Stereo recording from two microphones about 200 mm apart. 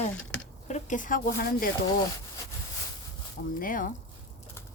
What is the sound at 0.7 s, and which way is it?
Speech, 40° left (ahead or behind).